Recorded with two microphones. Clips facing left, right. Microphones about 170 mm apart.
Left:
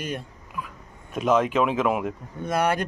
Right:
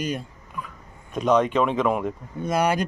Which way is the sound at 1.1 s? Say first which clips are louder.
Right 1 dB; 5° left (ahead or behind).